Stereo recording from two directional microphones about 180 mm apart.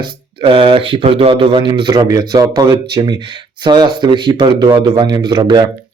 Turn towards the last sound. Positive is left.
turn(degrees=-25)  # may be behind; listen again after turning